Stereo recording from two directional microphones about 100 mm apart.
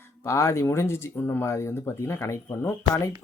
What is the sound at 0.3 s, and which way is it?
Speech, 30° left (ahead or behind).